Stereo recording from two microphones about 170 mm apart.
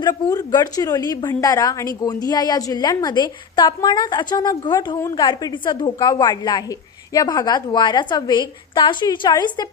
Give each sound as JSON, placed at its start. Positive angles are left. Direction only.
{"t": 0.0, "sound": "a woman's voice", "side_deg": 25}